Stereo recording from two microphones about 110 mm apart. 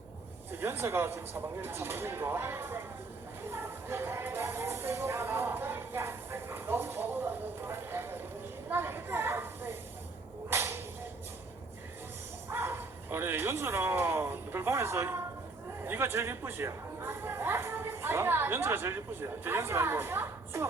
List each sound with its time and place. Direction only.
0.5 s speech: 20° right (ahead or behind)
3.5 s a sound: 20° right (ahead or behind)
10.5 s whip: 25° right (ahead or behind)
12.5 s bow-wow: 20° right (ahead or behind)
15.8 s speech: 20° right (ahead or behind)